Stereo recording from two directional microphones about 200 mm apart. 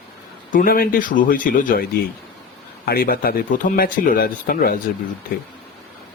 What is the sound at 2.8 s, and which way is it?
Speech, 50° left (ahead or behind).